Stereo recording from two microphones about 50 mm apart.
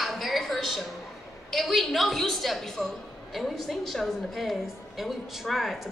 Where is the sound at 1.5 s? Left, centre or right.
Centre.